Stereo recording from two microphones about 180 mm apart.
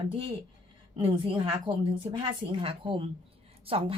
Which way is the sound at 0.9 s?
30° right (ahead or behind).